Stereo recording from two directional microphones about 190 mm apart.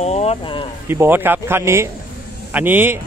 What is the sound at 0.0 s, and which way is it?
Speech, 35° left (ahead or behind).